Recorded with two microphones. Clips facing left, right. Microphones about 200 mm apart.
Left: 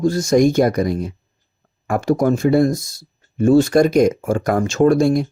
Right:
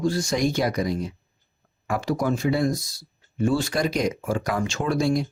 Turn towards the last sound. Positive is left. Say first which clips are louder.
# left 9 dB
turn(degrees=50)  # may be behind; listen again after turning